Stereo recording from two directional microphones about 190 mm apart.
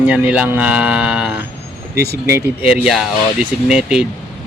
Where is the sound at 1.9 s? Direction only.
55° right (ahead or behind).